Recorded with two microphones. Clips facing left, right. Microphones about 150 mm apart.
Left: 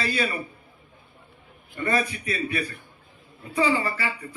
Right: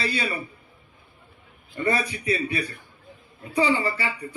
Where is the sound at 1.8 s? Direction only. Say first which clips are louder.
Right 1 dB; 30° right (ahead or behind).